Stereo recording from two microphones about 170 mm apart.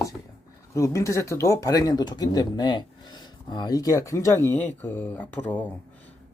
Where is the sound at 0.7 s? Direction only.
15° left (ahead or behind).